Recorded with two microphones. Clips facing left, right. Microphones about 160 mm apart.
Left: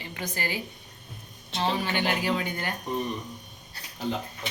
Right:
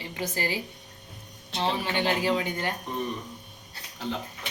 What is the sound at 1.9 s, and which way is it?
Speech, 25° right (ahead or behind).